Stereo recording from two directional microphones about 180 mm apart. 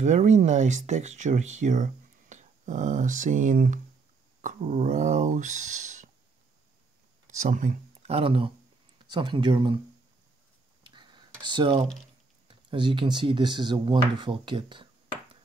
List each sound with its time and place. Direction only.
0.0 s speech: 45° right (ahead or behind)
7.2 s speech: 45° right (ahead or behind); by 9.8 s 25° right (ahead or behind)
10.8 s computer keyboard: 25° right (ahead or behind)
12.4 s speech: 25° right (ahead or behind)